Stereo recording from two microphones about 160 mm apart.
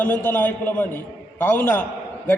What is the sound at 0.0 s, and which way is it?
A man's voice, 15° left (ahead or behind).